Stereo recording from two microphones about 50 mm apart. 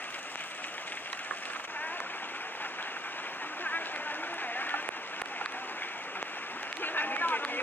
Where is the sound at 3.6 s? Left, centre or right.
Left.